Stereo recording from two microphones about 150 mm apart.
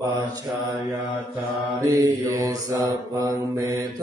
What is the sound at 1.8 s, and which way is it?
Mantra, 20° right (ahead or behind).